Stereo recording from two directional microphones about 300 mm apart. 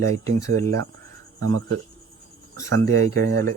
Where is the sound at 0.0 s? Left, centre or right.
Centre.